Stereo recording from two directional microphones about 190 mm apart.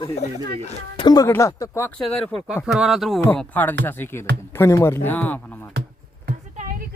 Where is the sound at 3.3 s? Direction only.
10° left (ahead or behind).